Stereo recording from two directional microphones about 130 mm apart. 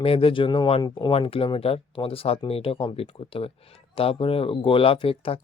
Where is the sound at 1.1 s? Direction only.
45° left (ahead or behind).